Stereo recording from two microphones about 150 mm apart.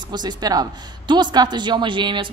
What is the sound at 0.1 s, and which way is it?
A woman's voice, 30° right (ahead or behind).